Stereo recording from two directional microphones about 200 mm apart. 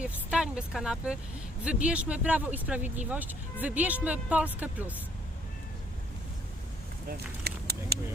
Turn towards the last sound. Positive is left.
turn(degrees=-50)  # may be behind; listen again after turning